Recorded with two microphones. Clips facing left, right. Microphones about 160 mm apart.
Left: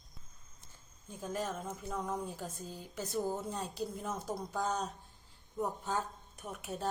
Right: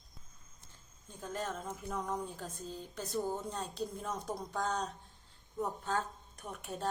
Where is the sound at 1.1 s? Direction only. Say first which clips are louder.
Left 2 dB; 10° left (ahead or behind).